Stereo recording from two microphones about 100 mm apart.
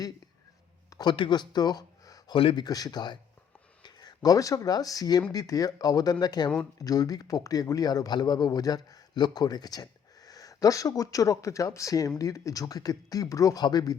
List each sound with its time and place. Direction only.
0.9 s a sound: 40° left (ahead or behind)
1.1 s speech: 55° left (ahead or behind)
2.3 s speech: 60° left (ahead or behind)
2.6 s speech: 40° left (ahead or behind)